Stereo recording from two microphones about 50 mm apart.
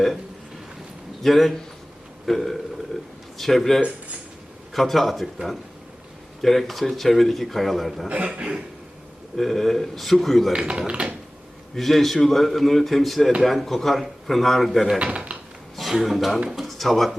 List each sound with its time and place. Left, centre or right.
1.2 s a man's voice: centre
2.9 s a man's voice: centre
3.3 s a man's voice: centre
8.1 s speech: right
9.4 s a man's voice: centre
10.5 s speech: centre
11.7 s a man's voice: centre
14.9 s dishes: right
15.7 s a man's voice: centre